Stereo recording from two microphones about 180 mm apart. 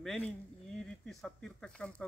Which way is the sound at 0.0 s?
Centre (ahead or behind).